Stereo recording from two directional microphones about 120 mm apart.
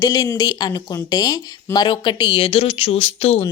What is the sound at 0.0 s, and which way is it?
Speech, 30° left (ahead or behind).